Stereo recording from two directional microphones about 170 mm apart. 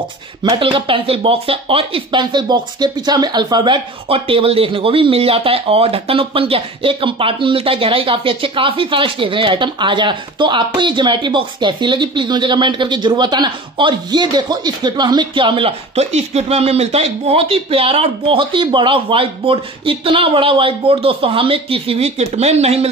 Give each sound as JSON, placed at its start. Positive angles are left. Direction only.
{"t": 0.4, "sound": "speech", "side_deg": -30}